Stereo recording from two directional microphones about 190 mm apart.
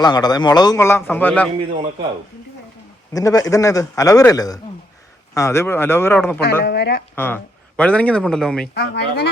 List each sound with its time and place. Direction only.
0.0 s a man's voice: 20° left (ahead or behind)
3.1 s a man's voice: 20° left (ahead or behind)
6.4 s speech: 60° left (ahead or behind)
7.2 s speech: 10° left (ahead or behind)
8.7 s speech: 65° left (ahead or behind)